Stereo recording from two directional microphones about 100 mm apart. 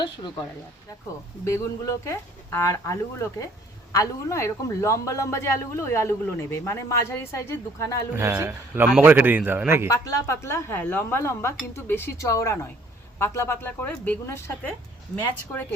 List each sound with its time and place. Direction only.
1.5 s speech: 30° left (ahead or behind)
8.1 s a man's voice: 30° right (ahead or behind)
9.9 s speech: 30° left (ahead or behind)